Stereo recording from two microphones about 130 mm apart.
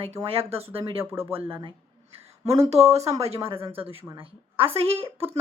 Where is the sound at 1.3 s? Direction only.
40° right (ahead or behind).